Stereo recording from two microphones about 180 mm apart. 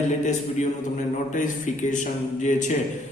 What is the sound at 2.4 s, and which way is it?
Speech, 45° left (ahead or behind).